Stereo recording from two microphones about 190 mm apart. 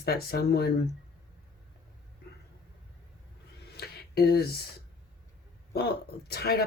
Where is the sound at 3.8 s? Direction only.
55° left (ahead or behind).